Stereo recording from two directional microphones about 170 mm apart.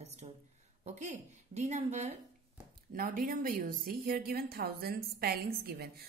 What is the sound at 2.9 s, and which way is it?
A woman's voice, 55° right (ahead or behind).